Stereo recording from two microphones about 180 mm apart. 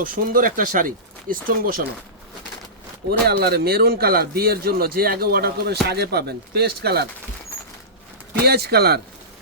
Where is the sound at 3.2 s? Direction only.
60° right (ahead or behind).